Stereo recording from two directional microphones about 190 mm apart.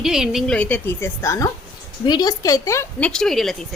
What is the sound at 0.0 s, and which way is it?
A woman's voice, 5° right (ahead or behind).